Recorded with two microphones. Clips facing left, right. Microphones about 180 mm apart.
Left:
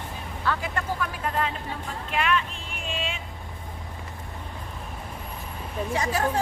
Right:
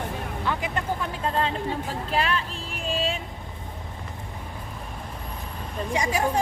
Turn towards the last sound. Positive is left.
turn(degrees=-10)  # may be behind; listen again after turning